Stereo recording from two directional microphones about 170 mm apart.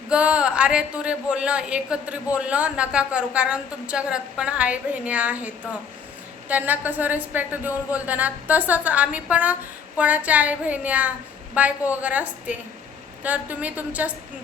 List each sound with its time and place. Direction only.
0.1 s speech: 5° right (ahead or behind)
6.5 s speech: 10° right (ahead or behind)